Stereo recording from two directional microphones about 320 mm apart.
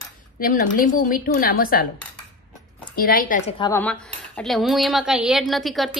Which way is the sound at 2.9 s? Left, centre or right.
Left.